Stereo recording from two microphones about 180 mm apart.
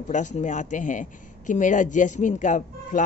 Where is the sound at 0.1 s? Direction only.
40° left (ahead or behind).